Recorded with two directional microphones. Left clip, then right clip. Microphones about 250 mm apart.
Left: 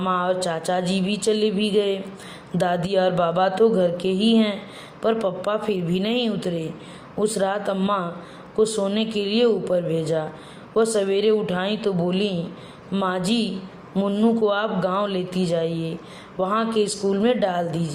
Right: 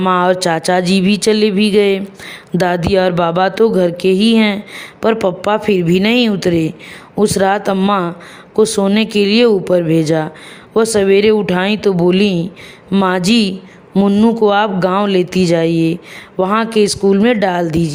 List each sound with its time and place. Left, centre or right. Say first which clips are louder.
0.0 s speech: right 10 dB; right